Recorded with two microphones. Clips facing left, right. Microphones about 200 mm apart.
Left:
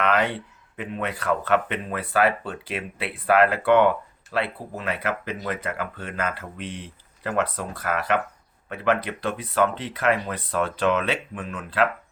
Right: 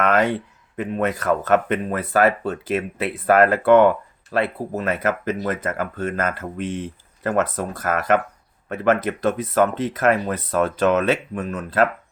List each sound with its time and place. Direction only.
0.0 s speech: 45° right (ahead or behind)